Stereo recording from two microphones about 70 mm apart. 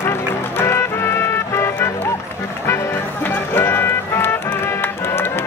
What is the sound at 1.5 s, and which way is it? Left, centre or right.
Music, left.